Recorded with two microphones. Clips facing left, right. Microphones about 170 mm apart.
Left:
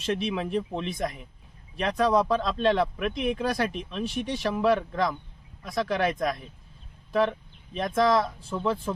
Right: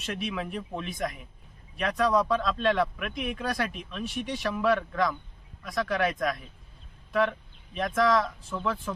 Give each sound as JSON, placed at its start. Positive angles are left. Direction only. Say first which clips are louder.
{"t": 0.0, "sound": "speech", "louder": "left 5 dB", "side_deg": 30}